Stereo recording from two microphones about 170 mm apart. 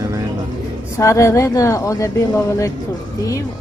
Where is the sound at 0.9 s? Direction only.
20° left (ahead or behind).